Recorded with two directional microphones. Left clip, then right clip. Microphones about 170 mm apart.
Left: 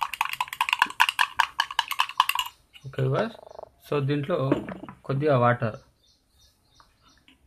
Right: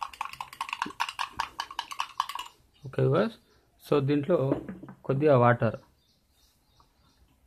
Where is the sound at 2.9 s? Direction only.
50° right (ahead or behind).